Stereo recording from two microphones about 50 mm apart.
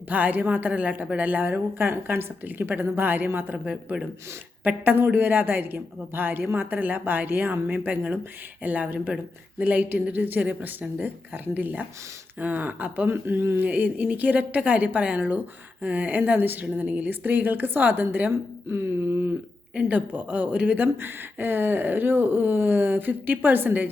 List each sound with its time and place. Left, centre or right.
0.1 s speech: right
4.6 s speech: right
13.1 s speech: right
13.7 s speech: right
18.7 s a sound: right
19.7 s speech: right